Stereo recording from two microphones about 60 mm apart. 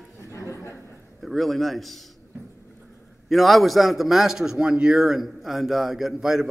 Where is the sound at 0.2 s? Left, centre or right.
Left.